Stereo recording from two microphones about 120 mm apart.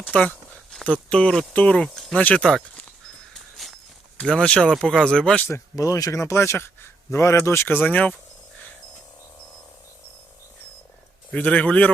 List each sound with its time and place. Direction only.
0.0 s a sound: 10° left (ahead or behind)
1.1 s speech: 5° left (ahead or behind)
3.3 s a sound: centre (ahead or behind)
4.2 s speech: 10° left (ahead or behind)
5.5 s a man's voice: 25° left (ahead or behind)
11.3 s speech: 10° left (ahead or behind)